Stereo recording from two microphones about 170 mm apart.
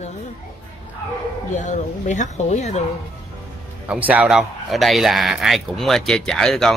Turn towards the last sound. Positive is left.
turn(degrees=0)  # may be behind; listen again after turning